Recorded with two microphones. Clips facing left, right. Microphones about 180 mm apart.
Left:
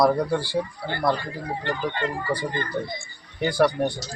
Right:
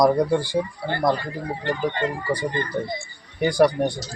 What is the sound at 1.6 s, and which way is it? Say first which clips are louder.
Speech: right 3 dB; 20° right (ahead or behind).